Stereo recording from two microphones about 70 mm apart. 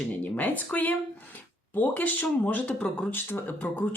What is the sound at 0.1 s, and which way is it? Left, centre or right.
Speech, left.